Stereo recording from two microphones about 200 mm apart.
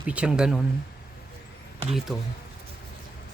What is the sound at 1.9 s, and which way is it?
Speech, centre (ahead or behind).